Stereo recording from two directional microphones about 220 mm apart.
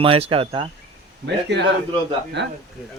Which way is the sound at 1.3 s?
50° right (ahead or behind).